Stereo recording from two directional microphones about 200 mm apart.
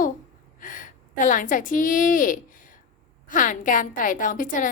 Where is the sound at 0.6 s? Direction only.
40° left (ahead or behind).